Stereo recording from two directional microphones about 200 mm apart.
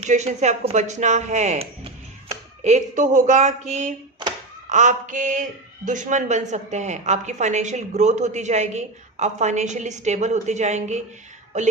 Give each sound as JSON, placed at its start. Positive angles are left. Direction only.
{"t": 0.0, "sound": "speech", "side_deg": -35}